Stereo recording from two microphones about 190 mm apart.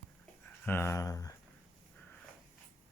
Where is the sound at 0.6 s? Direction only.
10° left (ahead or behind).